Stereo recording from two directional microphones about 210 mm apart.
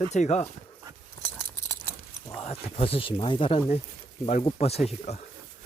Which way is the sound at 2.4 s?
30° left (ahead or behind).